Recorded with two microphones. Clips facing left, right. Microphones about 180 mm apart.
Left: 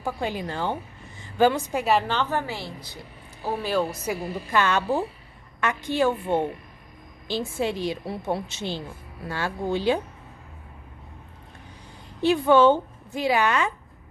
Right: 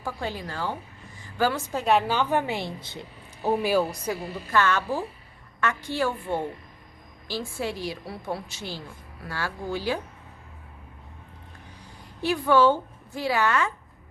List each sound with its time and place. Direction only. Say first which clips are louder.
0.0 s a woman's voice: left 4 dB; 15° left (ahead or behind)
1.8 s a woman's voice: right 2 dB; centre (ahead or behind)
4.0 s a woman's voice: left 2 dB; 15° left (ahead or behind)
12.2 s a woman's voice: left 3 dB; 25° left (ahead or behind)